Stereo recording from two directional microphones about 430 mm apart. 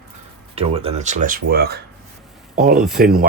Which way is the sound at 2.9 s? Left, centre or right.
Centre.